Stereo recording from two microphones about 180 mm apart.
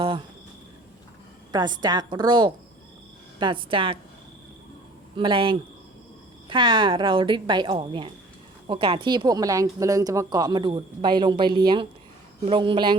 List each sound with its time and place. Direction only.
1.5 s speech: 25° right (ahead or behind)
5.1 s speech: 25° right (ahead or behind)